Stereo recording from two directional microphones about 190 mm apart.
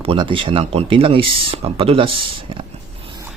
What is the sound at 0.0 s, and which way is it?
Speech, 30° right (ahead or behind).